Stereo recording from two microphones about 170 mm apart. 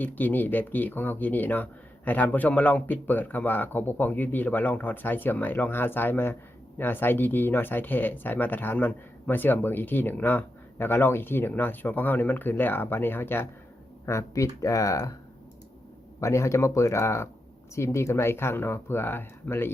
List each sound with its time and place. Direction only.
0.0 s speech: 10° left (ahead or behind)
16.2 s speech: 15° left (ahead or behind)